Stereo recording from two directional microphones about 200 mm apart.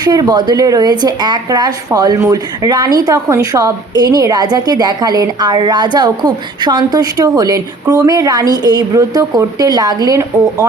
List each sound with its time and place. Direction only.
0.0 s a woman's voice: 20° right (ahead or behind)